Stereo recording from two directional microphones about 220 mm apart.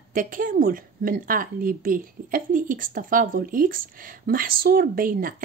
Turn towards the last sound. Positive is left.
turn(degrees=-40)  # may be behind; listen again after turning